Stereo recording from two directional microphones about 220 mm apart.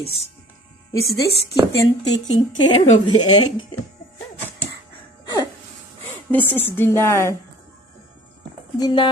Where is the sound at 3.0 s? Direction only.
20° left (ahead or behind).